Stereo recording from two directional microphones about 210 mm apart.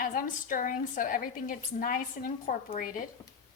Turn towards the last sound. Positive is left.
turn(degrees=40)  # may be behind; listen again after turning